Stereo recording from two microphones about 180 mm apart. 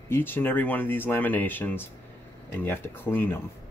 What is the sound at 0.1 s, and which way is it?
Speech, 10° left (ahead or behind).